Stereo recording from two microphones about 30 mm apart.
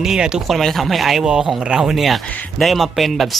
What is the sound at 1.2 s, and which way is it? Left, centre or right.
Speech, right.